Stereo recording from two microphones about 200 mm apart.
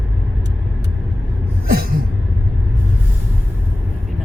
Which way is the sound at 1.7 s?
50° right (ahead or behind).